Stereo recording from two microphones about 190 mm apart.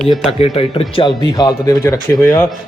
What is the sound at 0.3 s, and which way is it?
Speech, 30° left (ahead or behind).